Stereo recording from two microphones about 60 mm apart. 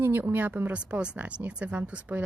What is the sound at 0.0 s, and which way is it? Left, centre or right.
Speech, right.